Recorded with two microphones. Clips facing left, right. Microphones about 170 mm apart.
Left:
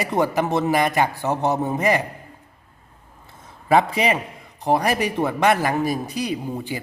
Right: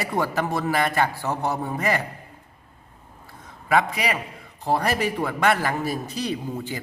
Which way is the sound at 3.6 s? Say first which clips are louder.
Left 4 dB; 30° left (ahead or behind).